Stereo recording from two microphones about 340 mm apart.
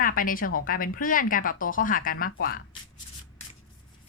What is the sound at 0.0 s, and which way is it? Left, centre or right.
Speech, left.